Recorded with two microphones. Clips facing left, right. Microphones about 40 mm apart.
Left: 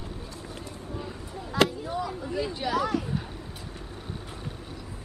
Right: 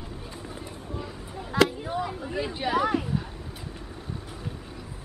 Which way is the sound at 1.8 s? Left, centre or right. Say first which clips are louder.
Right 1 dB; right.